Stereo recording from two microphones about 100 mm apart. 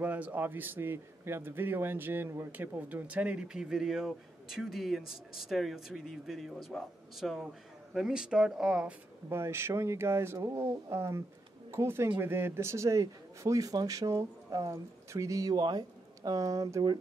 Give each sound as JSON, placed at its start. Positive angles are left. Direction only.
{"t": 0.0, "sound": "a man's voice", "side_deg": -15}
{"t": 9.3, "sound": "a man's voice", "side_deg": -25}